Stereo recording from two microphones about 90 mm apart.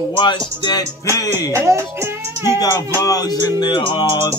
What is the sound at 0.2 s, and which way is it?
Music, 55° left (ahead or behind).